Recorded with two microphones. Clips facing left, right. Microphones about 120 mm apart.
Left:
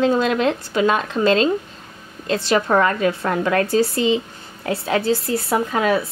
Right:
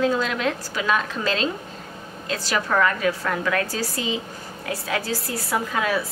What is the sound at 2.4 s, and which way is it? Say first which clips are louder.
A woman's voice: left 4 dB; 25° left (ahead or behind).